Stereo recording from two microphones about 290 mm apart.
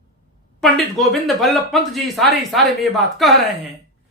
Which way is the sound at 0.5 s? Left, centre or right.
Centre.